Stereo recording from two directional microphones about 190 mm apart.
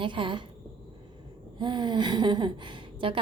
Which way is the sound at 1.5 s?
25° right (ahead or behind).